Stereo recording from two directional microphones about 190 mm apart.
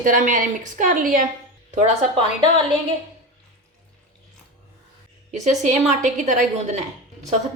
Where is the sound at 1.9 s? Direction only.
30° right (ahead or behind).